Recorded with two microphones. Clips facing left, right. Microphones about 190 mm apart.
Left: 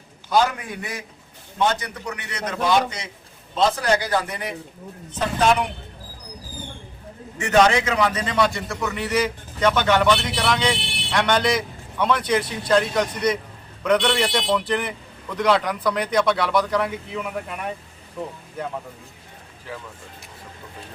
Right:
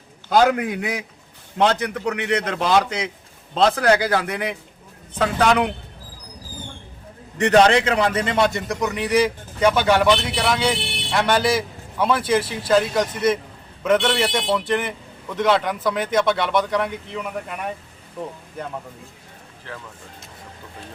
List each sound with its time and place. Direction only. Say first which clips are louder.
0.3 s a man's voice: right 4 dB; 70° right (ahead or behind)
7.3 s a man's voice: right 3 dB; 35° right (ahead or behind)
8.1 s a man's voice: right 2 dB; 20° right (ahead or behind); by 17.7 s centre (ahead or behind)